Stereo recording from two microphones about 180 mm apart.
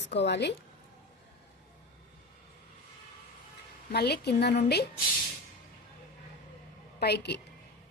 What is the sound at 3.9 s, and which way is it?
Speech, 65° left (ahead or behind).